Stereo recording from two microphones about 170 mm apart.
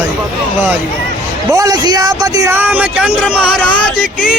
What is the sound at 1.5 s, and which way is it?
Speech, 20° right (ahead or behind).